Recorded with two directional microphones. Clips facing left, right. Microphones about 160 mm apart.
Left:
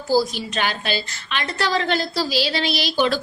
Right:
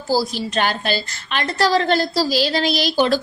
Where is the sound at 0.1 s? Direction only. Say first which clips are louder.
Even; 35° right (ahead or behind).